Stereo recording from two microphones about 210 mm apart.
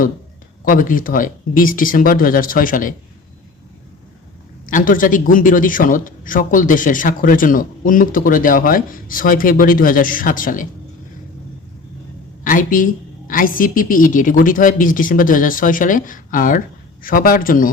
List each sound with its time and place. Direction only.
0.6 s a man's voice: 40° left (ahead or behind)
4.6 s a man's voice: 40° left (ahead or behind)
12.5 s a man's voice: 40° left (ahead or behind)